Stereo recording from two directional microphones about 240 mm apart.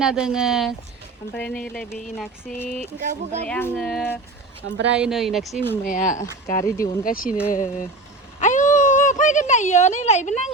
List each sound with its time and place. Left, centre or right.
0.0 s speech: centre
2.6 s a sound: centre
3.0 s speech: right
3.4 s speech: centre
4.6 s speech: right
4.9 s speech: centre
5.8 s speech: left
7.3 s speech: centre
7.5 s speech: left
8.4 s a sound: left